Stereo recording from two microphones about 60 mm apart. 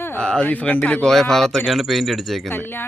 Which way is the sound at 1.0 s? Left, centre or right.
Centre.